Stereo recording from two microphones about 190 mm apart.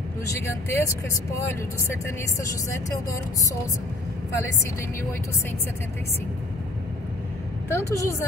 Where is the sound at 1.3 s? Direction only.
10° left (ahead or behind).